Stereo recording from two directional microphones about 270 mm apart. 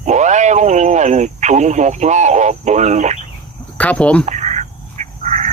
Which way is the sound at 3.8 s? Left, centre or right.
Centre.